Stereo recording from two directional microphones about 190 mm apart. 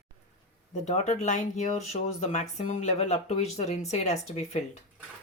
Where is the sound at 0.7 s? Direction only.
40° left (ahead or behind).